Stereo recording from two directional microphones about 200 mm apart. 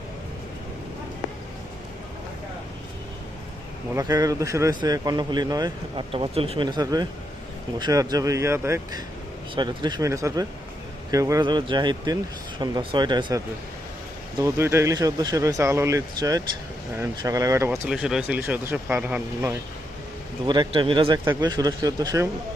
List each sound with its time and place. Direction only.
3.9 s speech: 15° right (ahead or behind)
20.5 s speech: 25° right (ahead or behind)